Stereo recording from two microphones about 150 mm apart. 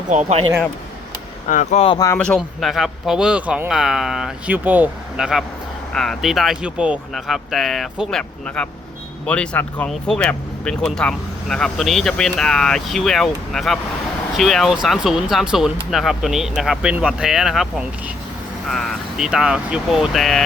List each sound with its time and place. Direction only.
0.1 s speech: 50° right (ahead or behind)
1.5 s speech: 55° left (ahead or behind)
2.1 s speech: 5° left (ahead or behind)